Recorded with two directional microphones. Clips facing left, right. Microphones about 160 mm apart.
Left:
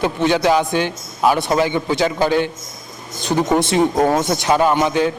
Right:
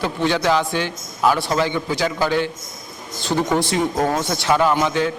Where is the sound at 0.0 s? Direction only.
20° left (ahead or behind).